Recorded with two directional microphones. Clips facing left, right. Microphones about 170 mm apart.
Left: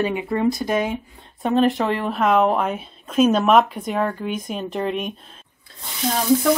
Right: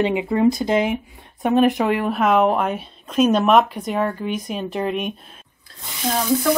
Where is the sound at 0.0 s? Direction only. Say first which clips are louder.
Right 3 dB; 20° right (ahead or behind); by 5.1 s centre (ahead or behind).